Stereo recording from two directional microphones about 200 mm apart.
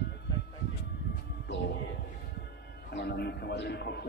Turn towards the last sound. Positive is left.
turn(degrees=55)  # may be behind; listen again after turning